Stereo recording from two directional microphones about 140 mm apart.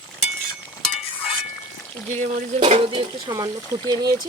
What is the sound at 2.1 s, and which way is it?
Stir, 55° right (ahead or behind).